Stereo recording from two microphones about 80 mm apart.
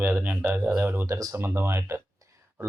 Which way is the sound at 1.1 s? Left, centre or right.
Right.